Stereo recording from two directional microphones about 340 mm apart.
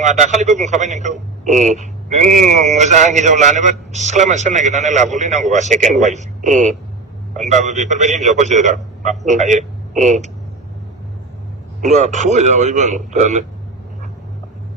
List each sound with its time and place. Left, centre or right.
0.0 s a man's voice: centre
11.8 s a man's voice: right